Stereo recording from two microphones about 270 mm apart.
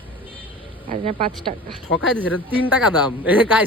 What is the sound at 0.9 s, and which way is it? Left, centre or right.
Speech, right.